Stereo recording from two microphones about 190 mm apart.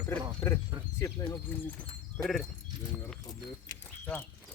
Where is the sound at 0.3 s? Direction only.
15° left (ahead or behind).